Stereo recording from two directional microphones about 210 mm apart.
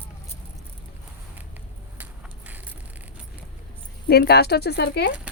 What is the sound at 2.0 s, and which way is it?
Vehicle, 5° right (ahead or behind).